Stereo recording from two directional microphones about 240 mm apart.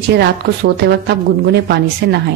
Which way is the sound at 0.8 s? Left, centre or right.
Right.